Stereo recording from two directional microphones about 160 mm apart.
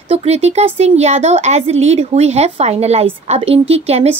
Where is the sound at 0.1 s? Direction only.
40° right (ahead or behind).